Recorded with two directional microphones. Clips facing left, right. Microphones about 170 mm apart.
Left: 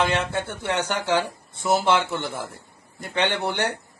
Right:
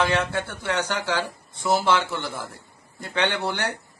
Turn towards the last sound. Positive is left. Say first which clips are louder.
# left 1 dB
turn(degrees=20)  # may be behind; listen again after turning